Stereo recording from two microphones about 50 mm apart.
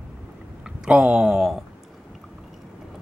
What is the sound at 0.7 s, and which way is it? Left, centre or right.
Speech, centre.